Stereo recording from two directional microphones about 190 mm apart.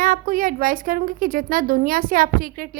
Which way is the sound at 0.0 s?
45° right (ahead or behind).